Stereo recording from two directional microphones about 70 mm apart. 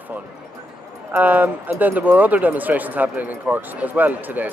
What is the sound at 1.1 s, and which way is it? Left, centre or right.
Speech, right.